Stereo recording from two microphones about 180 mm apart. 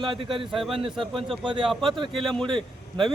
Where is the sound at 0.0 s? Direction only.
30° right (ahead or behind).